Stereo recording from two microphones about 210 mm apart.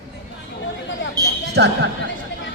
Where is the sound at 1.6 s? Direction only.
55° right (ahead or behind).